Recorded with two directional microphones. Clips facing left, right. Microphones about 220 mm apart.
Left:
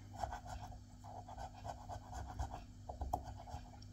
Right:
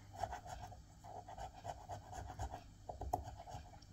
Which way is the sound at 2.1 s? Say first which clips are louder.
Even; 20° right (ahead or behind).